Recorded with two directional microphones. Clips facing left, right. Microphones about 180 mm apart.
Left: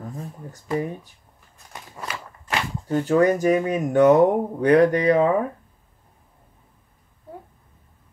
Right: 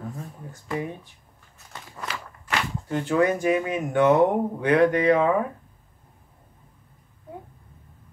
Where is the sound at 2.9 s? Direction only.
40° left (ahead or behind).